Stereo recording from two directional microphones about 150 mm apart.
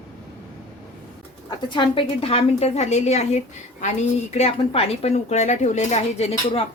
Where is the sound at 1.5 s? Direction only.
35° left (ahead or behind).